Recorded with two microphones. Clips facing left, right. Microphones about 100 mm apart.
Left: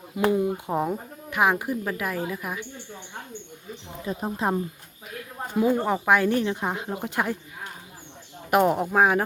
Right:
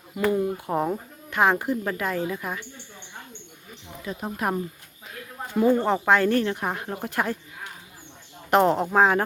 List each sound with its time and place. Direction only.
0.2 s speech: 15° left (ahead or behind)
4.4 s speech: 25° left (ahead or behind)
5.5 s speech: 5° left (ahead or behind)
8.4 s speech: 10° left (ahead or behind)